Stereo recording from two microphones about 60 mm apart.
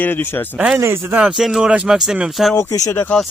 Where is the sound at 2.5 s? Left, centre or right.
Left.